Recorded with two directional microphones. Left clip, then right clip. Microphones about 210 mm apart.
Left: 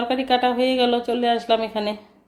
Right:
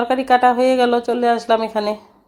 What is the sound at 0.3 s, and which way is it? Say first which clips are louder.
Speech: right 7 dB; 20° right (ahead or behind).